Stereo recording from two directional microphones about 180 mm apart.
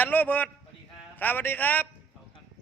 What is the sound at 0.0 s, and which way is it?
Speech, 10° left (ahead or behind).